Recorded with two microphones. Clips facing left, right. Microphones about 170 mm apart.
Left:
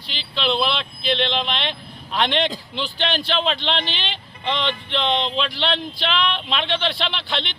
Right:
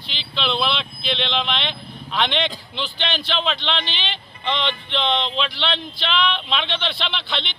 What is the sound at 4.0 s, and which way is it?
Speech, 5° left (ahead or behind).